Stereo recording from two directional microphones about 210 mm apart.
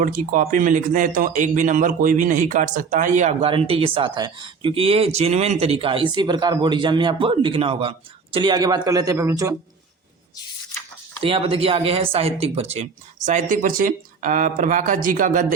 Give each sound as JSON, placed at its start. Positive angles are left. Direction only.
{"t": 0.0, "sound": "a man's voice", "side_deg": -40}
{"t": 11.2, "sound": "speech", "side_deg": -25}